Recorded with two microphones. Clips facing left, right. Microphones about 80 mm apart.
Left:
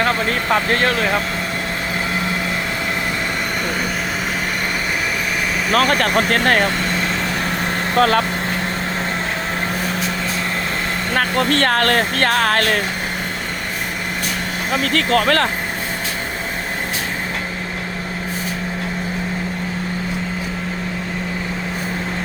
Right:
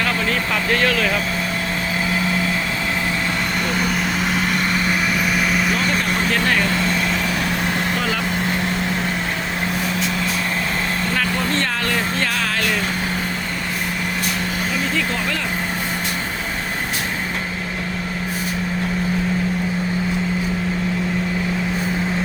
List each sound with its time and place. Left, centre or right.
0.0 s speech: left
5.7 s speech: left
7.9 s speech: left
11.3 s speech: left
14.9 s speech: left